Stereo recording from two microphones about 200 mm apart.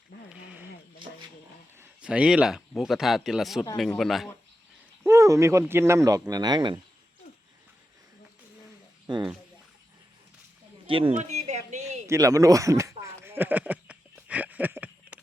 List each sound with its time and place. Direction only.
1.8 s speech: 5° right (ahead or behind)
5.0 s speech: 15° right (ahead or behind)
9.1 s speech: 25° right (ahead or behind)
10.8 s speech: 25° right (ahead or behind)
12.0 s a sound: 15° right (ahead or behind)